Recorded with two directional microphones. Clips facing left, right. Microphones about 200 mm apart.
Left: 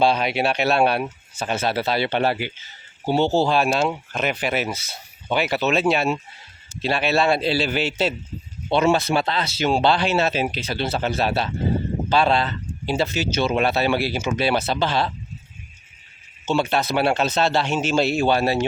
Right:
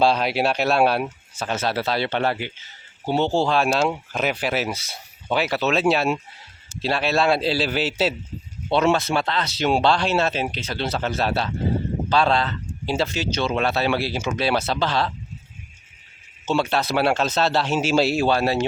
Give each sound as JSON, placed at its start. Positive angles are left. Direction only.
{"t": 0.0, "sound": "speech", "side_deg": 0}
{"t": 1.4, "sound": "speech", "side_deg": 10}
{"t": 16.7, "sound": "speech", "side_deg": 0}